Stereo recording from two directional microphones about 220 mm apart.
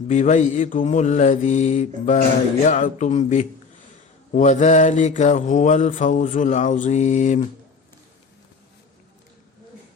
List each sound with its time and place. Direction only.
0.1 s mantra: 30° left (ahead or behind)